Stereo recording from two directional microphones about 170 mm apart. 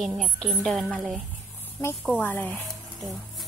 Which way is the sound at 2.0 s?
Centre (ahead or behind).